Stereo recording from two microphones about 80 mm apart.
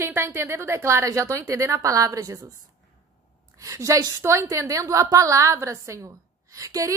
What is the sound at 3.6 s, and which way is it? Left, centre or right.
A woman's voice, right.